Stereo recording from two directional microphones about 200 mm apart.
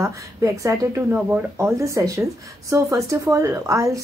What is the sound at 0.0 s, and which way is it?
Speech, 15° right (ahead or behind).